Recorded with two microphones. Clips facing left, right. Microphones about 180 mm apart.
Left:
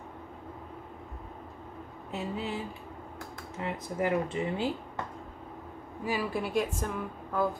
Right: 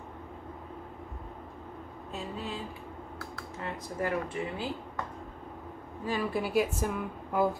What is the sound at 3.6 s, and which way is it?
Speech, 20° left (ahead or behind).